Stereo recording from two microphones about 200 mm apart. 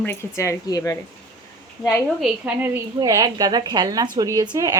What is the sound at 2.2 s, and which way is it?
A woman's voice, 10° right (ahead or behind).